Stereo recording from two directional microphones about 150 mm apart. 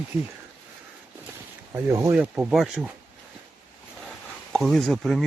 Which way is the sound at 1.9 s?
20° right (ahead or behind).